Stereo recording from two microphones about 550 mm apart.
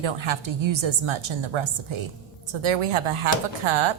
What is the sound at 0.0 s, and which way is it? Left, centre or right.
A woman's voice, right.